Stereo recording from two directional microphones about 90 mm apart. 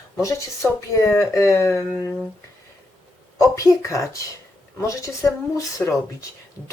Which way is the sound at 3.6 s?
35° left (ahead or behind).